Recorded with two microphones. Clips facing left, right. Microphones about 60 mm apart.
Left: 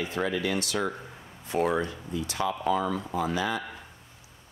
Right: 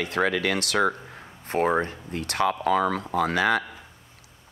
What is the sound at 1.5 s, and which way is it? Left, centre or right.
Speech, right.